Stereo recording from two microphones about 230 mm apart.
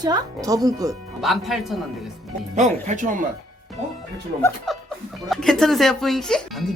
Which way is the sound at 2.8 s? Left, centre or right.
Right.